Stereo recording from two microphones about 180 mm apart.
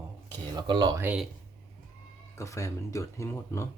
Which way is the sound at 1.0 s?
10° right (ahead or behind).